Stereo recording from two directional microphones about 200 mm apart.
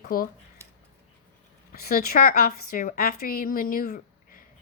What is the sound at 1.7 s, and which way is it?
A woman's voice, 50° left (ahead or behind).